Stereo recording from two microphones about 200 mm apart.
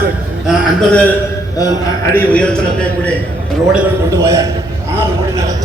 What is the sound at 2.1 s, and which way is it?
Speech, 5° left (ahead or behind).